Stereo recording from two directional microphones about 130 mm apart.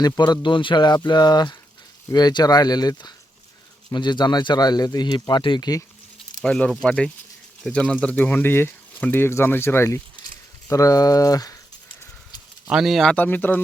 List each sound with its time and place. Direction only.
0.0 s speech: 35° left (ahead or behind)
6.4 s speech: 10° left (ahead or behind); by 11.5 s 30° left (ahead or behind)
12.6 s speech: 5° right (ahead or behind)
13.1 s speech: 15° left (ahead or behind)